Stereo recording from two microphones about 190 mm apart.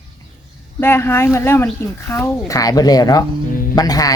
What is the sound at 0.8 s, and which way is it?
Speech, 10° left (ahead or behind).